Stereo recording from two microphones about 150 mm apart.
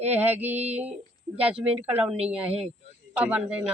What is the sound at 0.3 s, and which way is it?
Speech, 10° right (ahead or behind).